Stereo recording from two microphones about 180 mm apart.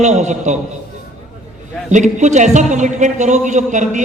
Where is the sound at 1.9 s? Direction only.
40° right (ahead or behind).